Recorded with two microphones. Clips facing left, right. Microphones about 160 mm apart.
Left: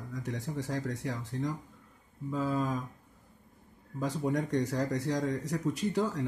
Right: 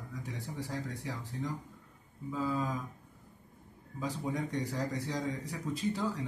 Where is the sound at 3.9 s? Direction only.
70° left (ahead or behind).